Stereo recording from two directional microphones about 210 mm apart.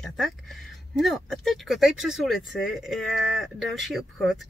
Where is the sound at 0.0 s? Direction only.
Centre (ahead or behind).